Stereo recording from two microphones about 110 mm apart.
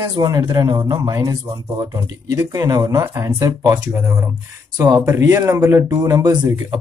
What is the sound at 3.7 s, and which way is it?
Speech, 20° right (ahead or behind).